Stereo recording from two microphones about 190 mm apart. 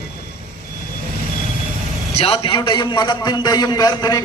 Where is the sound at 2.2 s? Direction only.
30° left (ahead or behind).